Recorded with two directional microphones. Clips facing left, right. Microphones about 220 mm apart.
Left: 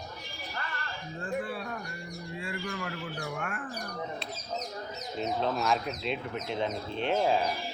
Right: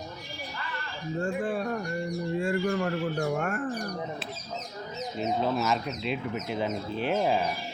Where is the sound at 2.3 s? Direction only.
45° right (ahead or behind).